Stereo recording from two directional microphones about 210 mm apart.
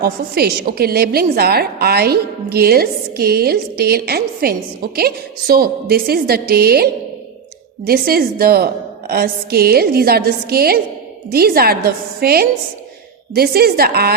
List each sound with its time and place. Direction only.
0.0 s a woman's voice: 50° right (ahead or behind)